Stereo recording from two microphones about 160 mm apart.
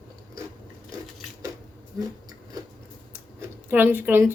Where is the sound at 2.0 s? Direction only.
25° right (ahead or behind).